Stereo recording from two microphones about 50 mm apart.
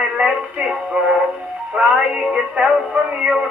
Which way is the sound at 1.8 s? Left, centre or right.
Right.